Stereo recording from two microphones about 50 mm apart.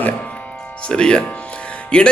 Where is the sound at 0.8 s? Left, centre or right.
Centre.